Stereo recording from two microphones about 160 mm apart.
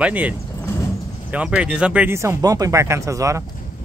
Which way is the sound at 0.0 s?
10° right (ahead or behind).